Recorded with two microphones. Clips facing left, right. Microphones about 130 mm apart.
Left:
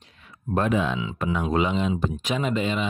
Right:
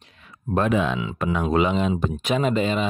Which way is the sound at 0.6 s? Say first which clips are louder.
Right 2 dB; 75° right (ahead or behind).